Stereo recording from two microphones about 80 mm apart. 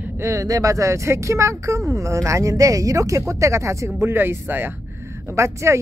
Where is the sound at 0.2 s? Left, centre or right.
Right.